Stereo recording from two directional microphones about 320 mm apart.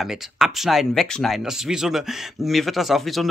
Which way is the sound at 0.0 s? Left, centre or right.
Centre.